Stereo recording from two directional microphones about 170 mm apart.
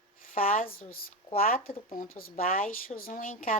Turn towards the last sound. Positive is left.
turn(degrees=55)  # may be behind; listen again after turning